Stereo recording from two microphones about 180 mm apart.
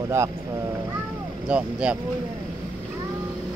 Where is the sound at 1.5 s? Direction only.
5° right (ahead or behind).